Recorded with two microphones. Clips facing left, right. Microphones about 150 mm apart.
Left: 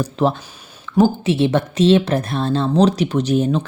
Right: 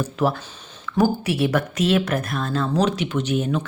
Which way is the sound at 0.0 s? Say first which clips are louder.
Left 3 dB; 30° left (ahead or behind).